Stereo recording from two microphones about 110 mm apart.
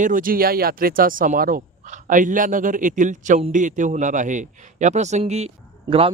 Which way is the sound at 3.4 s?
90° right.